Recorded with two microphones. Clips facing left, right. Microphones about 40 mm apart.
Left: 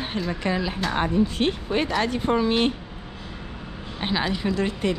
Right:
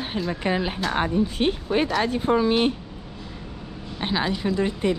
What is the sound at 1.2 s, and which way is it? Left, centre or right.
Speech, left.